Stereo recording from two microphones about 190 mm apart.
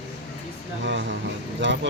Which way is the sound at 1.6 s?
75° right (ahead or behind).